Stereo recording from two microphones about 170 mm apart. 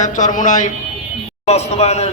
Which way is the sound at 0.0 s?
45° left (ahead or behind).